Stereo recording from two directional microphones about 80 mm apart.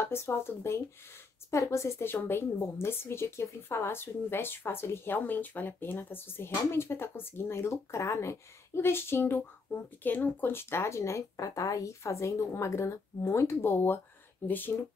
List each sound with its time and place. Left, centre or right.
0.0 s speech: left